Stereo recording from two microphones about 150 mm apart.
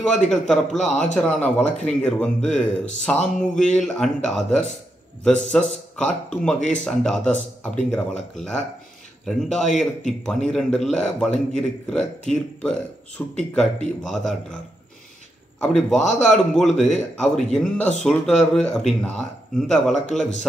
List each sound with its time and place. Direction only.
0.3 s a man's voice: centre (ahead or behind)
15.9 s a man's voice: 5° left (ahead or behind)